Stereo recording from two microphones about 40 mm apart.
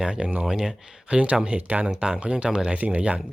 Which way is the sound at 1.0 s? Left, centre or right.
Right.